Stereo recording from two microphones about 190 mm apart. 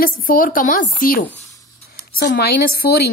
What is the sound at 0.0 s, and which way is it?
A woman's voice, 50° left (ahead or behind).